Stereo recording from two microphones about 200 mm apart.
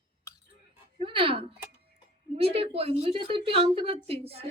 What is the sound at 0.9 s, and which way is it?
A woman's voice, 25° right (ahead or behind).